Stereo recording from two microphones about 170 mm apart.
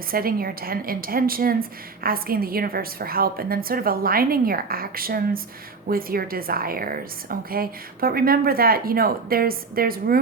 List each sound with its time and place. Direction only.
0.1 s a woman's voice: 60° right (ahead or behind)